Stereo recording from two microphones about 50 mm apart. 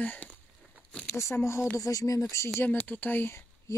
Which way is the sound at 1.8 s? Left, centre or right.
Left.